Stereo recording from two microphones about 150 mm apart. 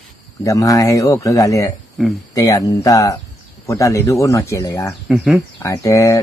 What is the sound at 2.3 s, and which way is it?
A man's voice, 20° left (ahead or behind).